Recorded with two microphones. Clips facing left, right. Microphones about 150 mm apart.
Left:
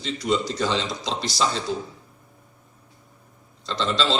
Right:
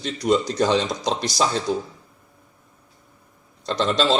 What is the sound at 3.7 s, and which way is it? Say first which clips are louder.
Speech: right 4 dB; 50° right (ahead or behind).